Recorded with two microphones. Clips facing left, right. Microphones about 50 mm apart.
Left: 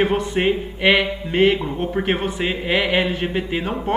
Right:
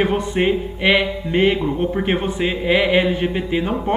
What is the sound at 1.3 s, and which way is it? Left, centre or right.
Music, centre.